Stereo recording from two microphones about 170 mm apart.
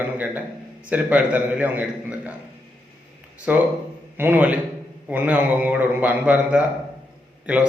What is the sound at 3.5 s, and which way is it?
A man's voice, 10° right (ahead or behind).